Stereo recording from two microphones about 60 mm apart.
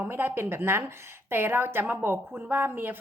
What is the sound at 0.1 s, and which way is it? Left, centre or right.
A woman's voice, right.